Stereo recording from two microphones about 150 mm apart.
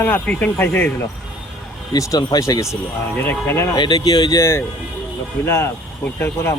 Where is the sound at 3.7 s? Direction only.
30° left (ahead or behind).